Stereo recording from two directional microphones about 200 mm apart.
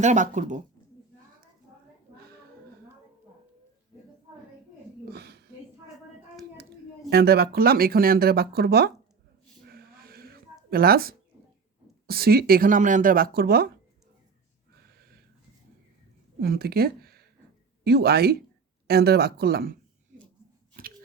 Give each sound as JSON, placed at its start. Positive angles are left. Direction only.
{"t": 0.0, "sound": "speech", "side_deg": -35}
{"t": 5.1, "sound": "a sound", "side_deg": -55}
{"t": 7.1, "sound": "speech", "side_deg": -50}
{"t": 9.6, "sound": "a sound", "side_deg": -50}
{"t": 10.7, "sound": "speech", "side_deg": -50}
{"t": 16.4, "sound": "speech", "side_deg": -50}
{"t": 20.8, "sound": "scissors", "side_deg": -45}